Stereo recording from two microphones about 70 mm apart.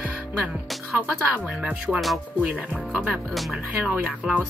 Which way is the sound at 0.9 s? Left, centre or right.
Right.